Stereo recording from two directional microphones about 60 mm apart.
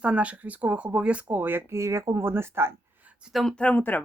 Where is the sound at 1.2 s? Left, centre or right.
Right.